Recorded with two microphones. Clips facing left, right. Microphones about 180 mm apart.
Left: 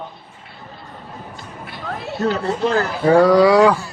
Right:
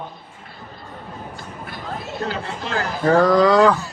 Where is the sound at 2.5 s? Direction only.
40° left (ahead or behind).